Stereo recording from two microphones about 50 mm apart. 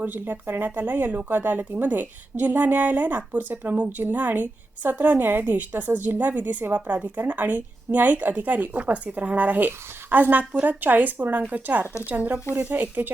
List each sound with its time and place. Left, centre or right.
0.0 s speech: right